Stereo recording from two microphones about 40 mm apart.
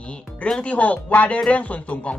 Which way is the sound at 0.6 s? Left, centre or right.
Left.